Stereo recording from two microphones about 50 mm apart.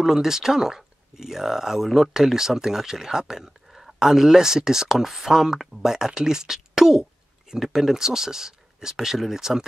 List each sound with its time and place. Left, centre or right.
0.0 s speech: centre